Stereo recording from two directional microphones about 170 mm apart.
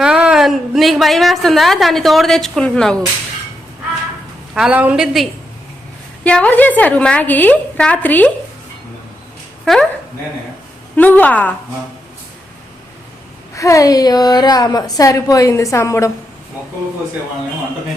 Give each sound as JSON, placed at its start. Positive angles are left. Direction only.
{"t": 0.0, "sound": "a woman's voice", "side_deg": -5}
{"t": 4.5, "sound": "a woman's voice", "side_deg": -5}
{"t": 9.7, "sound": "a woman's voice", "side_deg": 0}
{"t": 10.9, "sound": "a woman's voice", "side_deg": 10}
{"t": 13.6, "sound": "a woman's voice", "side_deg": 20}